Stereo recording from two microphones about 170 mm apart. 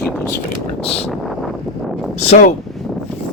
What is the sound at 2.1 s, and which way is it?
Speech, 40° left (ahead or behind).